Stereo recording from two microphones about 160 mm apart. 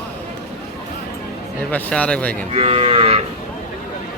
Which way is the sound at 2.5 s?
35° right (ahead or behind).